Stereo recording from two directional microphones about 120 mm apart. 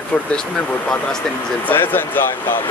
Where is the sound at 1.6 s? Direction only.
15° left (ahead or behind).